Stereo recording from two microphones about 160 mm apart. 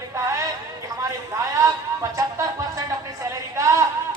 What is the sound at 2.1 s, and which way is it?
Music, 20° right (ahead or behind).